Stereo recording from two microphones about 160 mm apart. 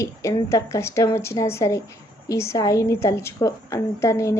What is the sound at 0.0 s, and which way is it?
A woman's voice, 20° left (ahead or behind).